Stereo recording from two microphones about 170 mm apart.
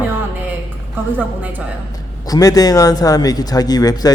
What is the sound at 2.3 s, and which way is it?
Speech, 20° left (ahead or behind).